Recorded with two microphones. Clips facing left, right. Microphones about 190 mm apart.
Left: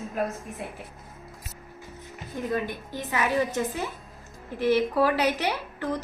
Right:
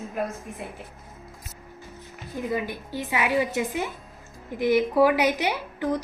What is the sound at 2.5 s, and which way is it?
A woman's voice, 10° right (ahead or behind).